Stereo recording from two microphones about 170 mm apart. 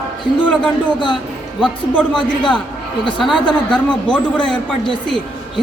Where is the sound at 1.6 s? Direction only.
5° left (ahead or behind).